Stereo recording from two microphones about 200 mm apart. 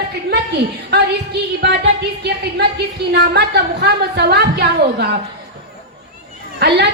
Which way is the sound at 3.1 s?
55° right (ahead or behind).